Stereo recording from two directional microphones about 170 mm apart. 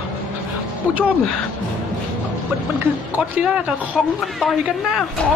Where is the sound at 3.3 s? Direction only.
5° right (ahead or behind).